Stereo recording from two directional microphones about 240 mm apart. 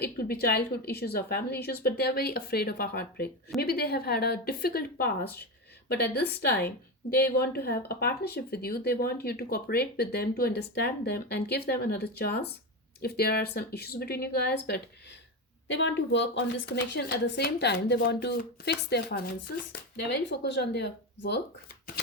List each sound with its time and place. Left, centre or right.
0.4 s a woman's voice: left